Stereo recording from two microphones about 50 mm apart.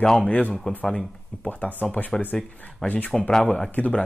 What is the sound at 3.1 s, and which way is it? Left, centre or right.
Speech, centre.